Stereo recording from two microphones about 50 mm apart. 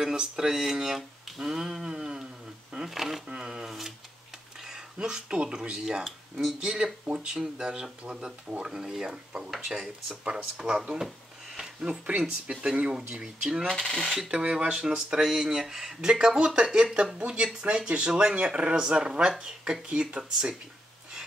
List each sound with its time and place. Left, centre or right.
0.0 s speech: centre
12.2 s speech: centre
13.7 s speech: centre
14.3 s speech: centre